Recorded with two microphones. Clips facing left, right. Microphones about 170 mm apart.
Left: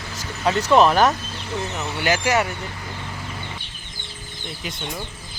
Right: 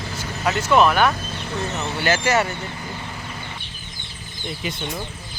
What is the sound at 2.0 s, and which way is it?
Speech, 15° left (ahead or behind).